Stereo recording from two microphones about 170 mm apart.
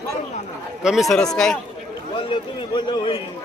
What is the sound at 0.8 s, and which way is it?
Speech, centre (ahead or behind).